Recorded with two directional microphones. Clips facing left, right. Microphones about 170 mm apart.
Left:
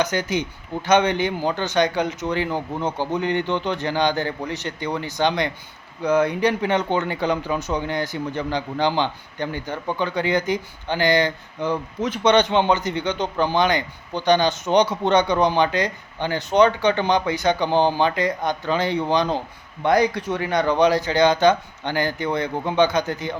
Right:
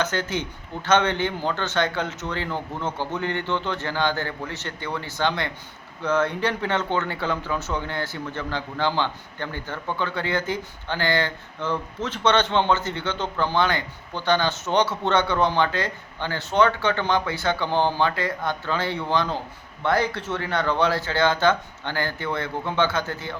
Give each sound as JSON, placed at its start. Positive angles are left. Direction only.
{"t": 0.0, "sound": "speech", "side_deg": 15}